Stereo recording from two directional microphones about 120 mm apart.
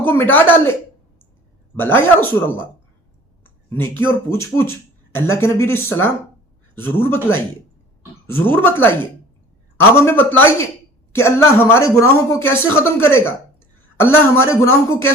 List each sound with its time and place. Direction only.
0.0 s speech: 15° left (ahead or behind)
3.7 s speech: 20° left (ahead or behind)